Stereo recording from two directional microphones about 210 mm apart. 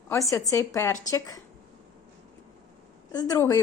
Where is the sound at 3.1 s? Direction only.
15° left (ahead or behind).